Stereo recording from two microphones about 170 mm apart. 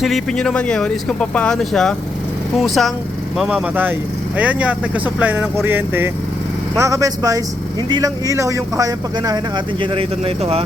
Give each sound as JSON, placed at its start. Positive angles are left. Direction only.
{"t": 0.0, "sound": "speech", "side_deg": 0}